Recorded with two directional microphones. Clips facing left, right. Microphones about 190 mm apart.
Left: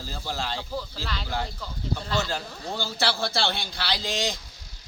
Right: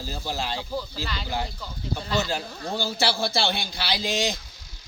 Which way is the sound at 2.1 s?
15° right (ahead or behind).